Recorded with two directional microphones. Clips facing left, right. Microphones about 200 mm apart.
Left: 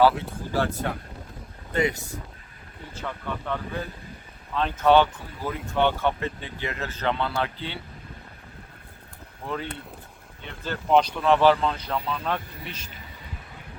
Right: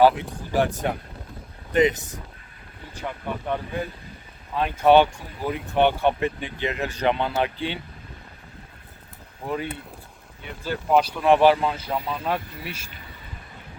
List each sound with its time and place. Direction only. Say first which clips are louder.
0.5 s speech: right 4 dB; 15° right (ahead or behind)
9.5 s speech: right 3 dB; 10° right (ahead or behind)